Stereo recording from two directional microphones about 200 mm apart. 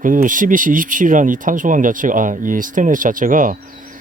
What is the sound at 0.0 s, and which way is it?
Speech, 40° right (ahead or behind).